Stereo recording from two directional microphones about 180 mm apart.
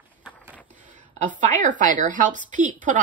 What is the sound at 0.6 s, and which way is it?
A woman's voice, 45° right (ahead or behind).